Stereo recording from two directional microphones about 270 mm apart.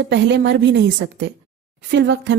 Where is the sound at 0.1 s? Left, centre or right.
Right.